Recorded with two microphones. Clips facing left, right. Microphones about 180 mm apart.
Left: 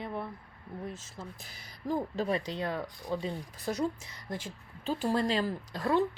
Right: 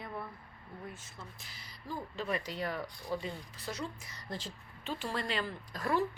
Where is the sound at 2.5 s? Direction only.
20° left (ahead or behind).